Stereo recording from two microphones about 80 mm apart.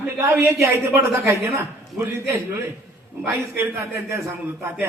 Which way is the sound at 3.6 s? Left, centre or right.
Right.